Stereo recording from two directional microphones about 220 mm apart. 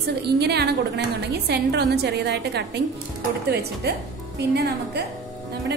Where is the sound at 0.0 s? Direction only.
50° right (ahead or behind).